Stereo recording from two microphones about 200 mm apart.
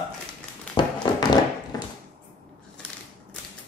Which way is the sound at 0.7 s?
20° left (ahead or behind).